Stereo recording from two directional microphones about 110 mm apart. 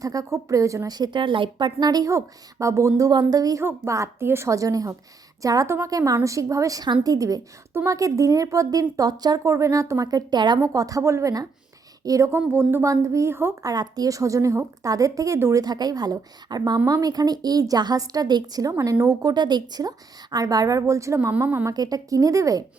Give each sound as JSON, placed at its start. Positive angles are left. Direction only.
{"t": 0.0, "sound": "a woman's voice", "side_deg": -30}
{"t": 3.6, "sound": "a woman's voice", "side_deg": -25}
{"t": 13.7, "sound": "a woman's voice", "side_deg": -35}
{"t": 15.6, "sound": "a woman's voice", "side_deg": -40}
{"t": 18.7, "sound": "a woman's voice", "side_deg": -25}
{"t": 19.3, "sound": "a woman's voice", "side_deg": -40}